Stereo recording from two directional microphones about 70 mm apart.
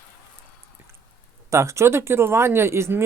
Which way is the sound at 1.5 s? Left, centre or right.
Right.